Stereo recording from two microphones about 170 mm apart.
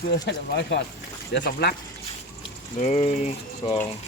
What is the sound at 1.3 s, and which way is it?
Speech, 70° left (ahead or behind).